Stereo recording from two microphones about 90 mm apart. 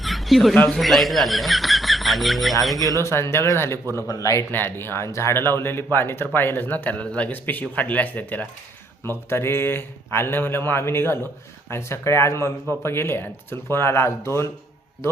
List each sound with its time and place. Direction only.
0.0 s a sound: centre (ahead or behind)
0.5 s a man's voice: 15° left (ahead or behind)
0.8 s speech: centre (ahead or behind)
3.0 s speech: 30° left (ahead or behind)
4.5 s speech: 25° left (ahead or behind)